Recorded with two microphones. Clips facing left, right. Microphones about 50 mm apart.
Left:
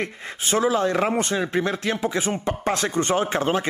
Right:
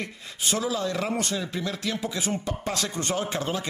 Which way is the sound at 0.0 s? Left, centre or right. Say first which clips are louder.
Left 4 dB; left.